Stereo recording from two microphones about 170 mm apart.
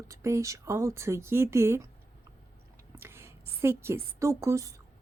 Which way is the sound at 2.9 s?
15° right (ahead or behind).